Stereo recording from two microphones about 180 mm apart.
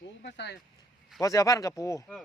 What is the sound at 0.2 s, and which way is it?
Speech, 70° left (ahead or behind).